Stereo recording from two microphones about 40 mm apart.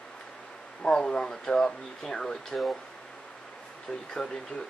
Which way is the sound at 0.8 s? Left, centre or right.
Centre.